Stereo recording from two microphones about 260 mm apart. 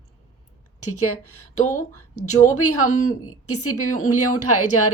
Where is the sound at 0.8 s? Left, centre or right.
Left.